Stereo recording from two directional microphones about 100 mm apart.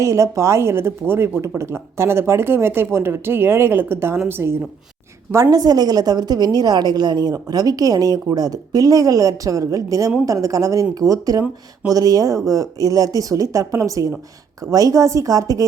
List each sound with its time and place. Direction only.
0.0 s speech: 30° right (ahead or behind)
5.3 s a woman's voice: 35° right (ahead or behind)